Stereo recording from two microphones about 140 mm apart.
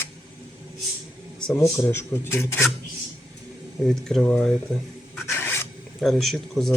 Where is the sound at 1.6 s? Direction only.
15° left (ahead or behind).